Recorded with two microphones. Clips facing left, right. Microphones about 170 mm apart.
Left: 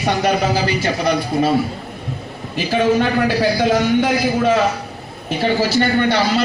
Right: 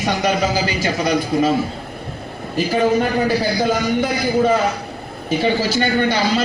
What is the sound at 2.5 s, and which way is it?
A man's voice, 80° left.